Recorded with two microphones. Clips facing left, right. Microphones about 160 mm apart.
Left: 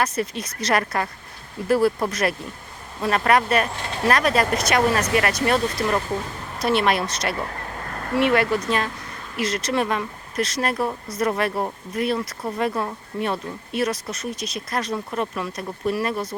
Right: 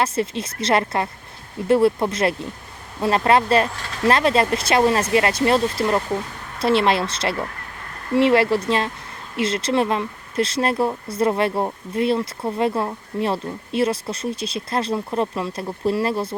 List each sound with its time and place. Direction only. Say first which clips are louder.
0.0 s speech: right 2 dB; 25° right (ahead or behind)